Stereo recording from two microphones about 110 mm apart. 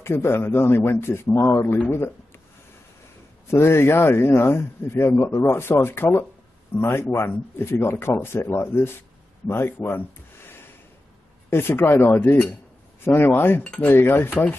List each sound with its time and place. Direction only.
0.0 s a man's voice: 20° left (ahead or behind)
3.4 s a man's voice: 20° left (ahead or behind)